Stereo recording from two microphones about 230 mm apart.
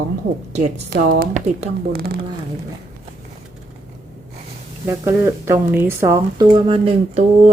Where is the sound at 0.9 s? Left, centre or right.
Right.